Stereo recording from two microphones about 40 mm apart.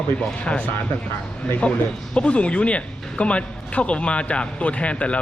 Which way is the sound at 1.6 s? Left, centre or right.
Left.